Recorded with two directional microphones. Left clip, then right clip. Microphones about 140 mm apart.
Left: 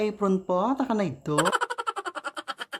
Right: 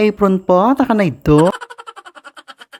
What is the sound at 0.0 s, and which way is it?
Speech, 35° right (ahead or behind).